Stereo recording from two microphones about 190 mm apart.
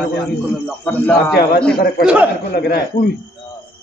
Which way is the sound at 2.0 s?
5° right (ahead or behind).